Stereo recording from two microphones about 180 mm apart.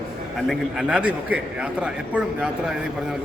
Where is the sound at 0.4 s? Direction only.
5° right (ahead or behind).